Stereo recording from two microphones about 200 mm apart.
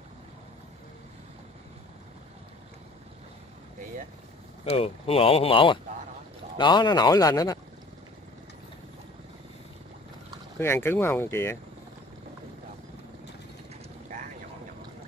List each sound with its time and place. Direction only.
4.7 s speech: 30° left (ahead or behind)
10.6 s speech: 10° left (ahead or behind)